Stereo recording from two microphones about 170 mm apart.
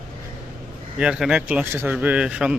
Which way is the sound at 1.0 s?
5° right (ahead or behind).